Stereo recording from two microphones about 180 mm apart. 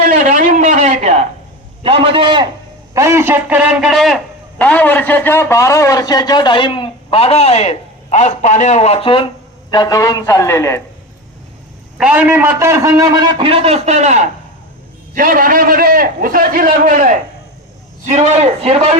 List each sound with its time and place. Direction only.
0.0 s a sound: 45° right (ahead or behind)
1.8 s a man's voice: 30° right (ahead or behind)
2.9 s a man's voice: 15° right (ahead or behind); by 10.8 s 15° left (ahead or behind)
11.9 s a man's voice: 10° right (ahead or behind); by 14.3 s 40° right (ahead or behind)
15.1 s a man's voice: 50° right (ahead or behind)